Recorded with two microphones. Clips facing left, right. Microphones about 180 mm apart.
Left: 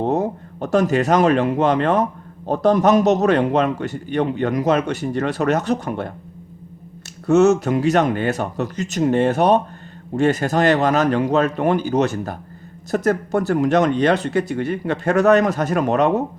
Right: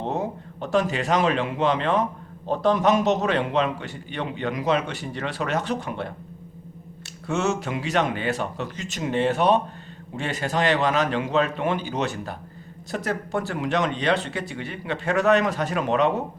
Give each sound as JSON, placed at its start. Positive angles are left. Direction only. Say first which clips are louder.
{"t": 0.0, "sound": "a man's voice", "louder": "left 7 dB", "side_deg": 45}
{"t": 7.3, "sound": "a man's voice", "louder": "left 11 dB", "side_deg": 40}